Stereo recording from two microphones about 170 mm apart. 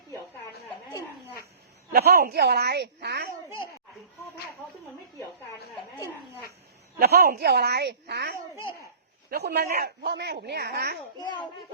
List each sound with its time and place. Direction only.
0.9 s a sound: 20° left (ahead or behind)
1.9 s speech: 65° right (ahead or behind); by 3.2 s 90° right
7.0 s speech: 65° right (ahead or behind)